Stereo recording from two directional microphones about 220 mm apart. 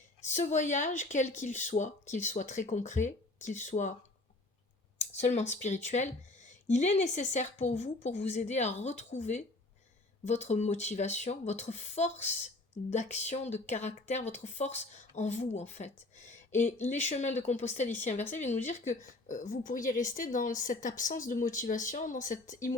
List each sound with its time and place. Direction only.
0.3 s a woman's voice: 35° left (ahead or behind)
4.9 s a woman's voice: 30° left (ahead or behind)